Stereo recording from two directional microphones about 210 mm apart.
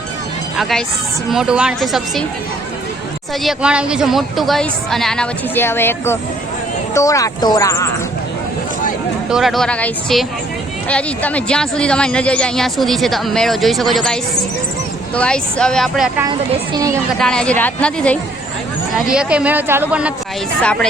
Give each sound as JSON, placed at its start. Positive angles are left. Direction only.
{"t": 0.5, "sound": "speech", "side_deg": 0}
{"t": 3.4, "sound": "speech", "side_deg": -5}
{"t": 9.3, "sound": "speech", "side_deg": 0}
{"t": 16.7, "sound": "speech", "side_deg": -15}
{"t": 17.2, "sound": "speech", "side_deg": 5}